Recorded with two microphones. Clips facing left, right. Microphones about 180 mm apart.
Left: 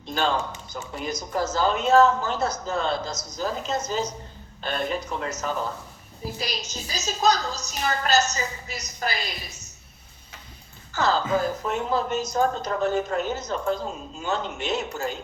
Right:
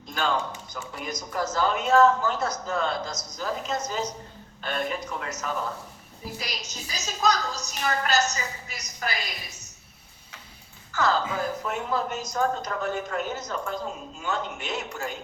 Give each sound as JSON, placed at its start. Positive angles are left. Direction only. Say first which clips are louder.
{"t": 0.1, "sound": "a woman's voice", "louder": "left 2 dB", "side_deg": 30}
{"t": 10.9, "sound": "a woman's voice", "louder": "left 2 dB", "side_deg": 30}